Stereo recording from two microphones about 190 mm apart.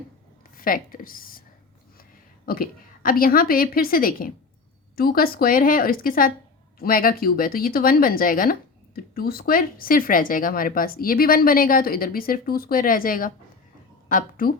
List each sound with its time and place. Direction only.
0.5 s speech: 50° left (ahead or behind)
2.5 s speech: 50° left (ahead or behind)